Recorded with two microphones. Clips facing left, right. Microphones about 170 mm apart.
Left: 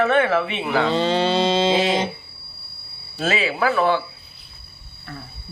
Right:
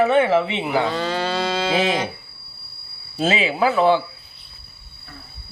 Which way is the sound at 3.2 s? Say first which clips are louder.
Right 2 dB; 20° right (ahead or behind).